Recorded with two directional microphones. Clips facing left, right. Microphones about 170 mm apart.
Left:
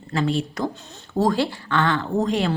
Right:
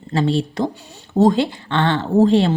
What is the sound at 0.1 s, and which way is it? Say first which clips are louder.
Speech: right 4 dB; 30° right (ahead or behind).